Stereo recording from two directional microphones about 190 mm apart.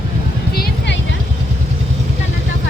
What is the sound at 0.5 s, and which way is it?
Vehicle, 55° left (ahead or behind).